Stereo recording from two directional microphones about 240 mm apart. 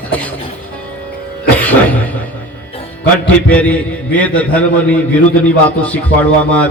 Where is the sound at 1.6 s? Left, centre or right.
Centre.